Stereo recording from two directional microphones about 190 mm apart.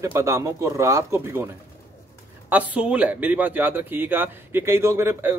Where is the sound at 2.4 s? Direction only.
10° right (ahead or behind).